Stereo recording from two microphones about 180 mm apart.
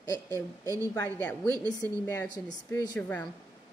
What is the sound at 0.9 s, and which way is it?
A woman's voice, 10° left (ahead or behind).